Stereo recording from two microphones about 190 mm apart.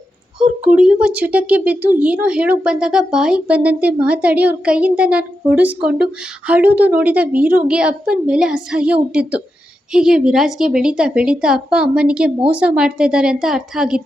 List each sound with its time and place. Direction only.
0.3 s a woman's voice: 5° right (ahead or behind)